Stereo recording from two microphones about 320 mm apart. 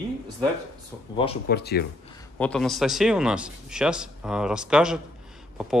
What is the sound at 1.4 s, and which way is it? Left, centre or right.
Speech, left.